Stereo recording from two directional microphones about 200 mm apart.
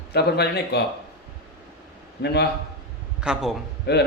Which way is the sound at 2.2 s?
55° left (ahead or behind).